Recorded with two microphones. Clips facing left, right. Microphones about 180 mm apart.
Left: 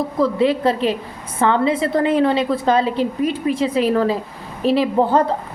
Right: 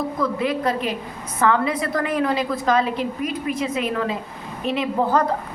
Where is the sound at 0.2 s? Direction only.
30° left (ahead or behind).